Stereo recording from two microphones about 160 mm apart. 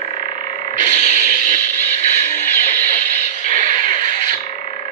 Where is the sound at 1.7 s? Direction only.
10° left (ahead or behind).